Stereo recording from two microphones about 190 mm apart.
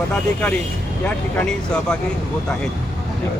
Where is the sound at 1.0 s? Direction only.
5° left (ahead or behind).